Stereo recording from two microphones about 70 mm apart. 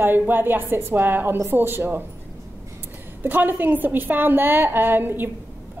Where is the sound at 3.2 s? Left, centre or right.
Right.